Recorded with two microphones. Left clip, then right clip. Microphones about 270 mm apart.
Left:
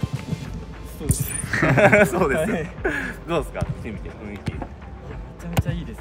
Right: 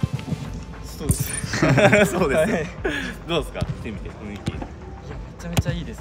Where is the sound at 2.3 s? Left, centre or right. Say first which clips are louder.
Right 3 dB; centre.